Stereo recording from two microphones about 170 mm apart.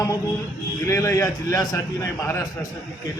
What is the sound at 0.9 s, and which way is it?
Speech, 20° left (ahead or behind).